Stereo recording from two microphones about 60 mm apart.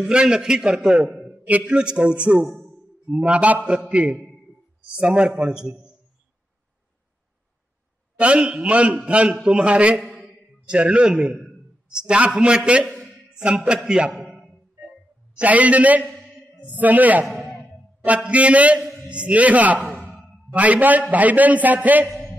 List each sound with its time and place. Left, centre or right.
0.0 s a man's voice: centre
4.9 s a man's voice: centre
8.2 s a man's voice: centre
14.2 s a sound: centre
15.3 s a man's voice: right
17.3 s a sound: centre
18.0 s a man's voice: right